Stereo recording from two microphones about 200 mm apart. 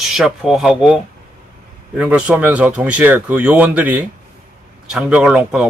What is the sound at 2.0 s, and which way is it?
Speech, 5° right (ahead or behind).